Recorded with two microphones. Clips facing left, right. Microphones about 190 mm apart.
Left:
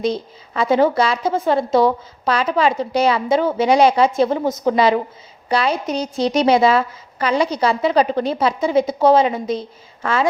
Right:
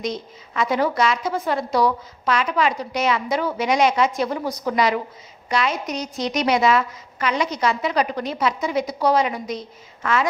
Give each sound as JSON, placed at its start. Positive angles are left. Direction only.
{"t": 0.0, "sound": "a woman's voice", "side_deg": 30}